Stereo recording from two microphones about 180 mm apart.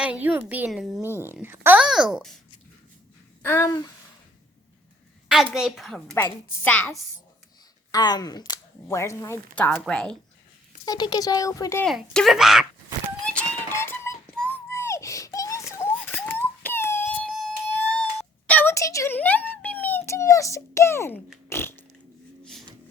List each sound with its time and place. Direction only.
0.0 s speech: 10° right (ahead or behind)
1.0 s speech: 10° right (ahead or behind)
3.4 s speech: 15° left (ahead or behind)
5.5 s speech: centre (ahead or behind)
6.1 s speech: 10° left (ahead or behind)
7.9 s speech: 20° left (ahead or behind); by 10.2 s 5° left (ahead or behind)
10.8 s speech: 20° left (ahead or behind)
11.9 s speech: centre (ahead or behind)
13.2 s a sound: 10° left (ahead or behind)
17.2 s a sound: centre (ahead or behind)
21.5 s biting: 15° left (ahead or behind)